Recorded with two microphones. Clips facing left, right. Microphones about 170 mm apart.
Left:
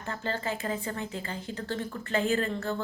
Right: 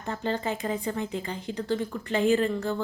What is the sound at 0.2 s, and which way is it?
A woman's voice, 20° right (ahead or behind).